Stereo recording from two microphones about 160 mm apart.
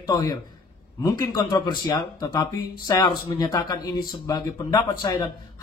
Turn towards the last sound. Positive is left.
turn(degrees=25)  # may be behind; listen again after turning